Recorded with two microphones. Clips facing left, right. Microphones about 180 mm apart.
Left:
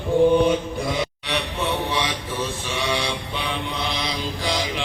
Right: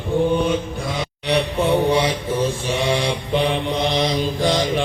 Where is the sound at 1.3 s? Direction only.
40° right (ahead or behind).